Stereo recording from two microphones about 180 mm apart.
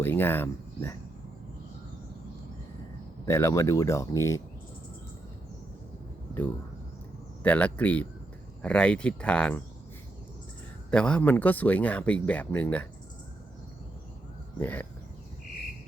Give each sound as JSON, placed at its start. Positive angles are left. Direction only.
{"t": 0.0, "sound": "speech", "side_deg": 10}
{"t": 3.2, "sound": "speech", "side_deg": 15}
{"t": 7.4, "sound": "speech", "side_deg": 10}
{"t": 10.9, "sound": "speech", "side_deg": 5}
{"t": 14.6, "sound": "speech", "side_deg": 10}